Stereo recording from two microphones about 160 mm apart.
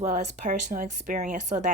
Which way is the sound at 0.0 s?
45° right (ahead or behind).